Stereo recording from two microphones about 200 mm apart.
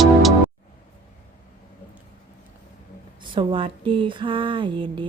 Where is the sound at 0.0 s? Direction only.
Centre (ahead or behind).